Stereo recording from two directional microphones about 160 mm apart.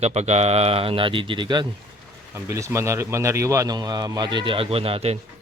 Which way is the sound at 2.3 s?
20° right (ahead or behind).